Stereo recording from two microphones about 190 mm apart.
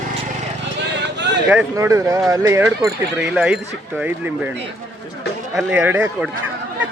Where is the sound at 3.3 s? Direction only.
5° right (ahead or behind).